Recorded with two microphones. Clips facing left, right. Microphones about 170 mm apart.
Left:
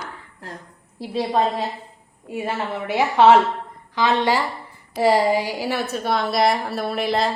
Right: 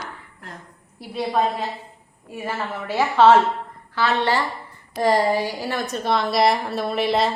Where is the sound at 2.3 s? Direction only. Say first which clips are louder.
Left 3 dB; 15° left (ahead or behind).